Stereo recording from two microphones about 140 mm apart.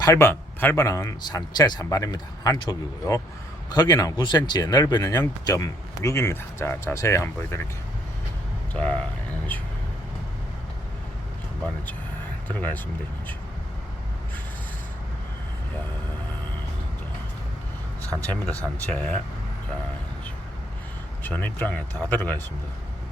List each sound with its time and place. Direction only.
0.0 s speech: 20° left (ahead or behind)
8.7 s speech: 5° left (ahead or behind)
12.5 s speech: 10° left (ahead or behind)
18.2 s speech: 10° left (ahead or behind)
21.2 s speech: 10° left (ahead or behind)